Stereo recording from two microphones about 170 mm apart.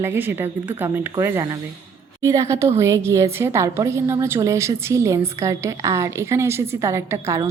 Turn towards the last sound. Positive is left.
turn(degrees=-15)  # may be behind; listen again after turning